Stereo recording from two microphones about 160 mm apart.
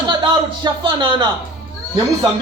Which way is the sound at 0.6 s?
30° right (ahead or behind).